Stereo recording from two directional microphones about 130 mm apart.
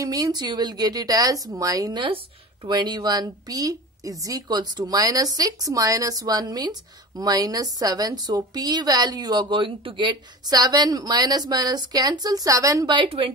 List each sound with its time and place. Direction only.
0.0 s a woman's voice: 30° right (ahead or behind)
12.9 s a woman's voice: 40° right (ahead or behind)